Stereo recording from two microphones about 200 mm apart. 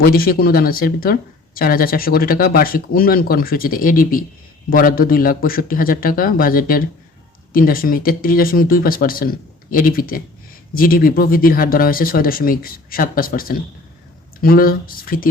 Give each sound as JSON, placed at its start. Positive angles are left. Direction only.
{"t": 0.0, "sound": "speech", "side_deg": 50}